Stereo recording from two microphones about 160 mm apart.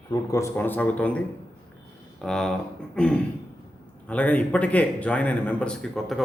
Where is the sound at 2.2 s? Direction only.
5° left (ahead or behind).